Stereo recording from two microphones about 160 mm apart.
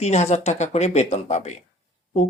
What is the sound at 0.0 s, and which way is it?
Speech, 45° left (ahead or behind).